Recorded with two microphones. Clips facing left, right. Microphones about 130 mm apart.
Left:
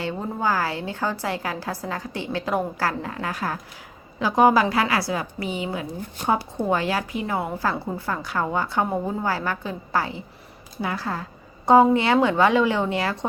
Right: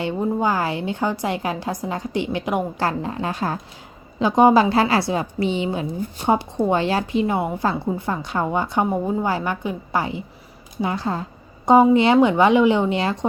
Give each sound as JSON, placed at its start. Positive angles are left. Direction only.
{"t": 0.0, "sound": "a woman's voice", "side_deg": -20}